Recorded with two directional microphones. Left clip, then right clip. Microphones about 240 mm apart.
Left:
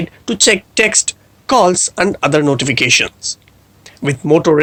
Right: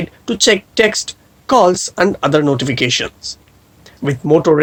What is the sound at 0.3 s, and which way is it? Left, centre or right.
Speech, left.